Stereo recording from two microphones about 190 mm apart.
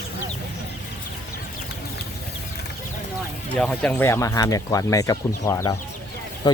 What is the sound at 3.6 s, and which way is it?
Speech, 5° left (ahead or behind).